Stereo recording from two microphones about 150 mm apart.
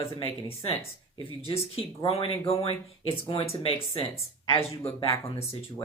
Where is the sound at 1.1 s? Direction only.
35° right (ahead or behind).